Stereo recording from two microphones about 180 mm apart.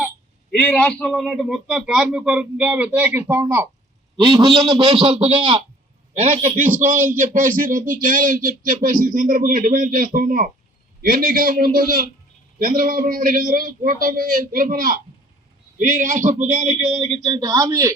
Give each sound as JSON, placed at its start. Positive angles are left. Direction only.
{"t": 0.6, "sound": "a man's voice", "side_deg": 5}
{"t": 4.3, "sound": "a man's voice", "side_deg": -25}
{"t": 6.7, "sound": "speech", "side_deg": -10}
{"t": 7.2, "sound": "a man's voice", "side_deg": -50}
{"t": 17.2, "sound": "speech", "side_deg": -20}